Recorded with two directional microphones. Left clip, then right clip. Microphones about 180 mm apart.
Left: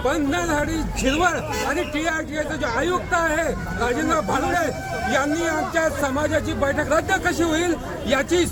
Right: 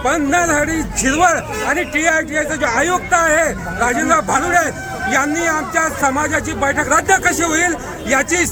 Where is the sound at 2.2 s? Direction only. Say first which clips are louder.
Right 8 dB; 20° right (ahead or behind).